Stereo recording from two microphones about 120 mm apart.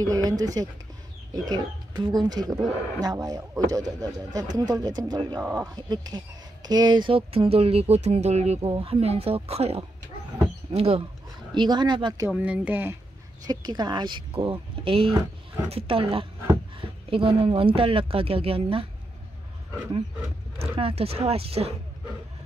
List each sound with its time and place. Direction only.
0.0 s speech: 30° right (ahead or behind); by 8.5 s 65° right (ahead or behind)
8.6 s speech: 55° right (ahead or behind)
11.5 s speech: 40° right (ahead or behind)
12.3 s speech: 10° right (ahead or behind)
13.5 s speech: 35° right (ahead or behind)
20.5 s speech: 55° right (ahead or behind)